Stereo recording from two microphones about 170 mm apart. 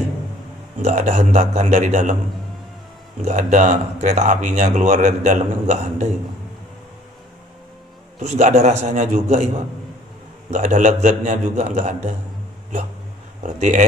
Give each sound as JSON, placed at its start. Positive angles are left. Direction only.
{"t": 0.8, "sound": "speech", "side_deg": -40}
{"t": 3.3, "sound": "speech", "side_deg": -45}
{"t": 8.2, "sound": "speech", "side_deg": -40}
{"t": 10.5, "sound": "speech", "side_deg": -45}
{"t": 13.4, "sound": "speech", "side_deg": -45}